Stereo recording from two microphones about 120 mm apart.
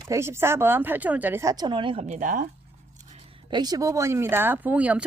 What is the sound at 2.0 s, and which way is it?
Speech, 80° right.